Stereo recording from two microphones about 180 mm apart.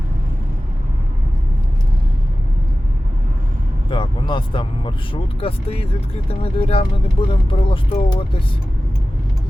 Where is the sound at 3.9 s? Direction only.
25° left (ahead or behind).